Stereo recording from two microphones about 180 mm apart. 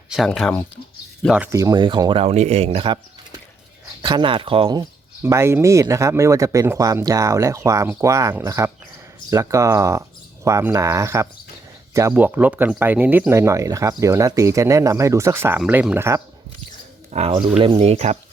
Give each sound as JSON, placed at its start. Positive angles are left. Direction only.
{"t": 0.1, "sound": "speech", "side_deg": 0}
{"t": 1.5, "sound": "speech", "side_deg": -20}
{"t": 17.1, "sound": "speech", "side_deg": -35}